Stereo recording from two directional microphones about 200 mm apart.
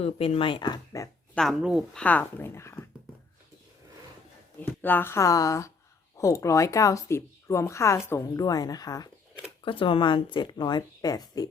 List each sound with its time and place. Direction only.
0.0 s speech: 30° left (ahead or behind)
1.4 s a woman's voice: centre (ahead or behind)
4.6 s a woman's voice: 10° left (ahead or behind)